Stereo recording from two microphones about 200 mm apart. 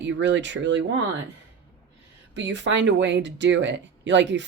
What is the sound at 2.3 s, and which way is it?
Speech, 65° right (ahead or behind).